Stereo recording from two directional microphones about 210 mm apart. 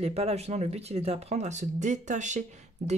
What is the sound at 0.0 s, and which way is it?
Speech, 30° right (ahead or behind).